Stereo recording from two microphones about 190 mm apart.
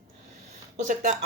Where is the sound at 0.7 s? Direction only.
40° right (ahead or behind).